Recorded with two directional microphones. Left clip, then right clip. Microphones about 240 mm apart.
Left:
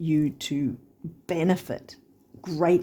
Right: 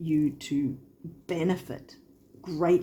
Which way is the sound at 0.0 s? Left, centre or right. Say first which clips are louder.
Left 2 dB; left.